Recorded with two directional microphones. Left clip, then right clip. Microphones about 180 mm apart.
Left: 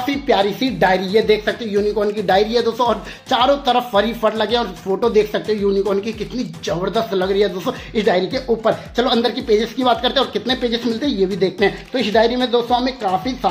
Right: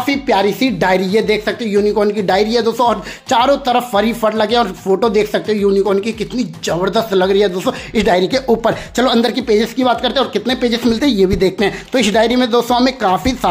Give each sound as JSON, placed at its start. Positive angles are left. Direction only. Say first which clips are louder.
{"t": 0.0, "sound": "speech", "louder": "right 3 dB", "side_deg": -30}